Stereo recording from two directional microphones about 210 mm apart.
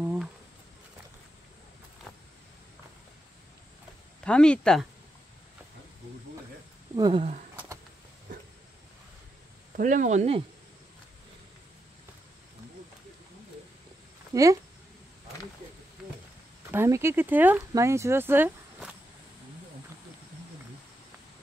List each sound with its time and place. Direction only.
0.0 s a sound: 5° right (ahead or behind)
4.2 s speech: 5° left (ahead or behind)
7.0 s speech: 25° right (ahead or behind)
9.8 s speech: 40° right (ahead or behind)
14.3 s speech: 15° right (ahead or behind)
16.7 s speech: 10° right (ahead or behind)